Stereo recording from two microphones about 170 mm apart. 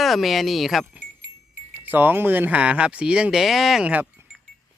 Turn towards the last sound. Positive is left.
turn(degrees=-10)  # may be behind; listen again after turning